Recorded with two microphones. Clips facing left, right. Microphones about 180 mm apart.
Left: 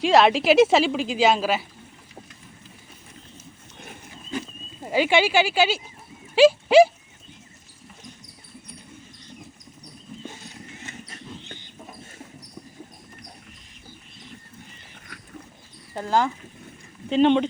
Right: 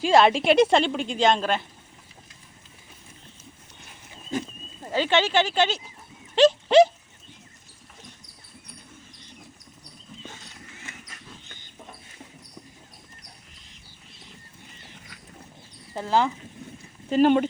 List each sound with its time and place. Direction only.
0.0 s a woman's voice: centre (ahead or behind)
4.8 s speech: 10° left (ahead or behind)
10.8 s a sound: 30° left (ahead or behind)
16.0 s a woman's voice: centre (ahead or behind)